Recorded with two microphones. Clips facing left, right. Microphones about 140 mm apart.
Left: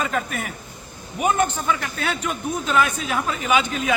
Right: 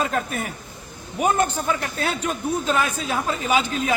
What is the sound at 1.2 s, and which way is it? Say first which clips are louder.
A man's voice: even; 35° right (ahead or behind).